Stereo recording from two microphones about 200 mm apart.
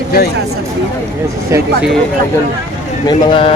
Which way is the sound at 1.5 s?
15° right (ahead or behind).